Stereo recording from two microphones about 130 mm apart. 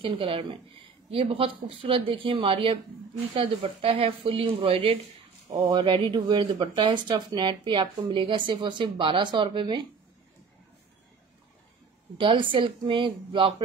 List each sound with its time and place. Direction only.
0.0 s speech: 45° right (ahead or behind)
5.5 s a woman's voice: 35° right (ahead or behind)
12.2 s a woman's voice: 40° right (ahead or behind)